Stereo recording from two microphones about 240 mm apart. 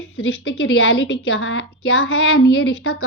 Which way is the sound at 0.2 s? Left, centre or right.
Left.